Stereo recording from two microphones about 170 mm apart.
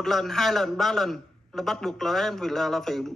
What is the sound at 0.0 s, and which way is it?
A man's voice, centre (ahead or behind).